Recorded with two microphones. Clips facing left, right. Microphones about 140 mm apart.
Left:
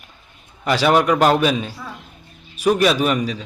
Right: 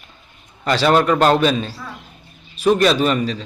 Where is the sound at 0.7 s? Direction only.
10° left (ahead or behind).